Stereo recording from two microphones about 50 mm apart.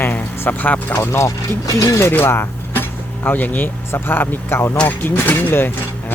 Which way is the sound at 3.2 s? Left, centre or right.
Left.